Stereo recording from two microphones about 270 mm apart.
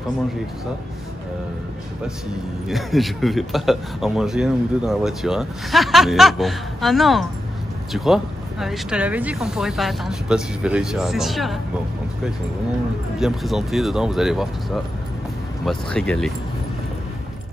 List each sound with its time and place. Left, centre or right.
2.7 s speech: centre
13.2 s speech: centre